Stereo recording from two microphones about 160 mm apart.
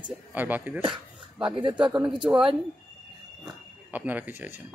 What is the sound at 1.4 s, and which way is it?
Speech, 30° right (ahead or behind).